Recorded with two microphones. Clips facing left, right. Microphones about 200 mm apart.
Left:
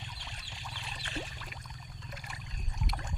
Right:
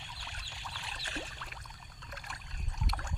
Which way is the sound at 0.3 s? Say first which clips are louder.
Left 1 dB; 15° left (ahead or behind).